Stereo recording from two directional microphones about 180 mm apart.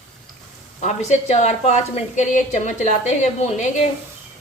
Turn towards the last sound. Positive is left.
turn(degrees=40)  # may be behind; listen again after turning